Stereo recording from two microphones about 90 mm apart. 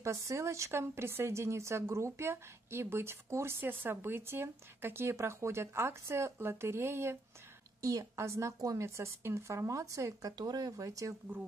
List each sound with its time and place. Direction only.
0.0 s speech: 35° right (ahead or behind)
10.3 s speech: 45° right (ahead or behind)